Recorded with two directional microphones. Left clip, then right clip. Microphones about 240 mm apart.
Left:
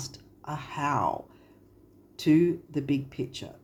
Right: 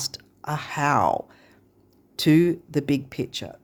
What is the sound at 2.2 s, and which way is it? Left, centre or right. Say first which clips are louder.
Speech: right 4 dB; right.